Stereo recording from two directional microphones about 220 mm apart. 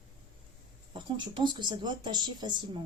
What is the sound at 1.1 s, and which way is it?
Speech, 20° right (ahead or behind).